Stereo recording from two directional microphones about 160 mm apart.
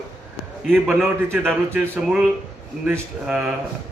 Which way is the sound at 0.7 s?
10° right (ahead or behind).